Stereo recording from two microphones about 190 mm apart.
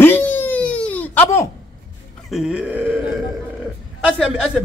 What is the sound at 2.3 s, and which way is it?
Speech, 5° right (ahead or behind).